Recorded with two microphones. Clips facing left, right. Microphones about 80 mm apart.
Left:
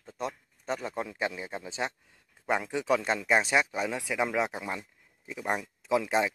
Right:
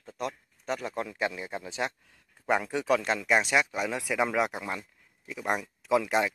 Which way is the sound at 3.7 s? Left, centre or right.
Centre.